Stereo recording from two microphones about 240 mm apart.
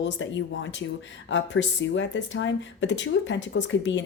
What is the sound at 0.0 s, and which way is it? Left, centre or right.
Speech, left.